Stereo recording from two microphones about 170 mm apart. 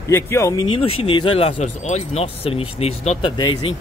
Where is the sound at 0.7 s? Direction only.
35° left (ahead or behind).